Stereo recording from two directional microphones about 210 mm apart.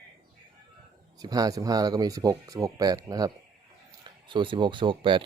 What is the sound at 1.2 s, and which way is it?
Speech, 20° right (ahead or behind).